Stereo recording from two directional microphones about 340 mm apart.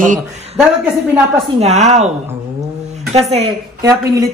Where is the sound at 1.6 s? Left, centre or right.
Centre.